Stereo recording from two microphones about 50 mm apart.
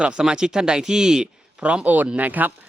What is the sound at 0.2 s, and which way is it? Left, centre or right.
Speech, centre.